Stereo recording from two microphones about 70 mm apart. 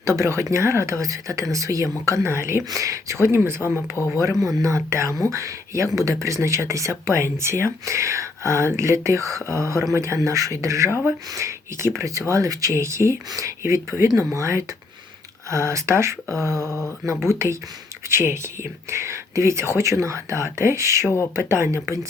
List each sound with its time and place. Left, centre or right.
0.0 s speech: right
2.6 s speech: right
4.2 s speech: right